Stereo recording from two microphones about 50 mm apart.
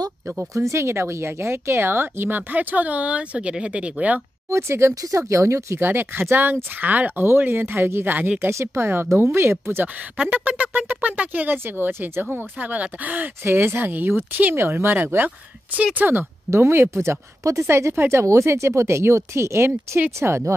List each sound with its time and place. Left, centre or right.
0.6 s speech: right
4.5 s speech: right
5.8 s speech: right
8.5 s speech: right
10.1 s speech: right
12.5 s speech: right
13.4 s speech: right
14.5 s speech: right
16.4 s speech: right